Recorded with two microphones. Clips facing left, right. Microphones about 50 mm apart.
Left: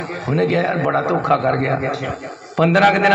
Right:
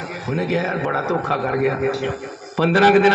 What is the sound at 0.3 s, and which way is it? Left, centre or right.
A man's voice, left.